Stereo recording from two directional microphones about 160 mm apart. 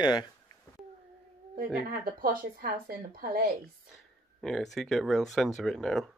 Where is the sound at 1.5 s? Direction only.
65° right (ahead or behind).